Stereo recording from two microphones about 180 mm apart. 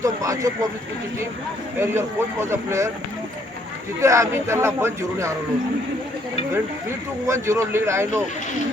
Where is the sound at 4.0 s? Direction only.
15° right (ahead or behind).